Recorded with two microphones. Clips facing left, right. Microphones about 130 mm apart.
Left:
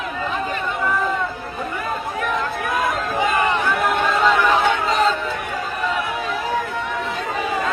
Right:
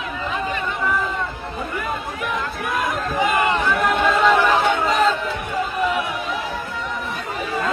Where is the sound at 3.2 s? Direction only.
15° right (ahead or behind).